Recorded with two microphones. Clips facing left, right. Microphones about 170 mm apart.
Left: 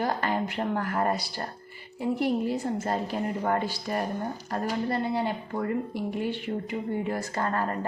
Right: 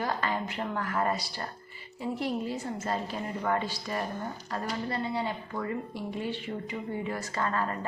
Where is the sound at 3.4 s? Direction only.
45° left (ahead or behind).